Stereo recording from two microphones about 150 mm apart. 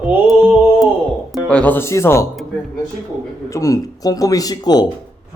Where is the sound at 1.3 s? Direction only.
5° left (ahead or behind).